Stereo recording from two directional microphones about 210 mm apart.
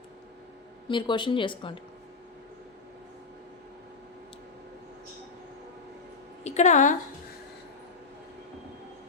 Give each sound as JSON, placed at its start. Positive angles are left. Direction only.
{"t": 0.9, "sound": "speech", "side_deg": 20}
{"t": 6.4, "sound": "a woman's voice", "side_deg": 35}